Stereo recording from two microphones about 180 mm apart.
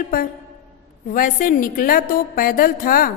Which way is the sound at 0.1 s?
55° left (ahead or behind).